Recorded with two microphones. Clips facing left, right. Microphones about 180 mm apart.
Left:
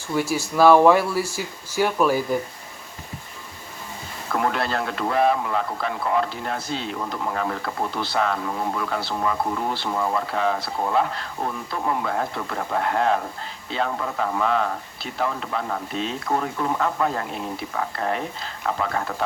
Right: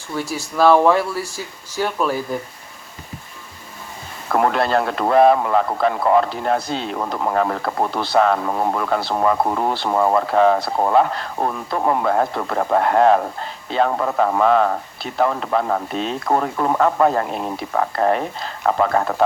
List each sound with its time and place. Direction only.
0.1 s speech: 5° left (ahead or behind)
4.3 s speech: 50° right (ahead or behind)